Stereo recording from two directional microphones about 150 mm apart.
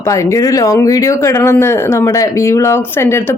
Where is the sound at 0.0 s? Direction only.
20° left (ahead or behind).